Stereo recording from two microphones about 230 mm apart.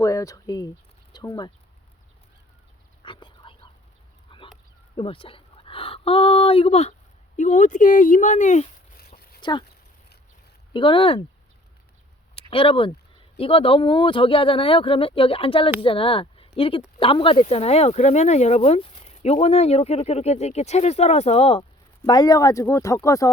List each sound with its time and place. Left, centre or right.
0.0 s speech: centre
3.0 s a sound: left
4.3 s goose: left
4.9 s speech: left
9.4 s speech: centre
10.8 s speech: left
12.3 s speech: left